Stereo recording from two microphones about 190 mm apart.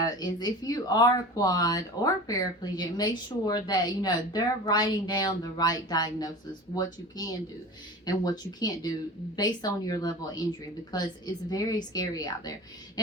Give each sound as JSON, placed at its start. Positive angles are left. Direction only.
{"t": 0.0, "sound": "speech", "side_deg": 20}